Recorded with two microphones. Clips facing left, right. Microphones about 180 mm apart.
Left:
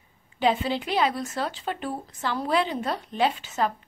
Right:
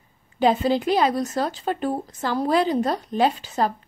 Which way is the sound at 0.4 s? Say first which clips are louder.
Right 5 dB; 40° right (ahead or behind).